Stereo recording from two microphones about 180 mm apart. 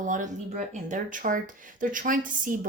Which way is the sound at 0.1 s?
45° right (ahead or behind).